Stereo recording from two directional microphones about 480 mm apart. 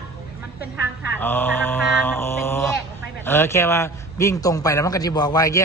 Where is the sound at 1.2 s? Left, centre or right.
Centre.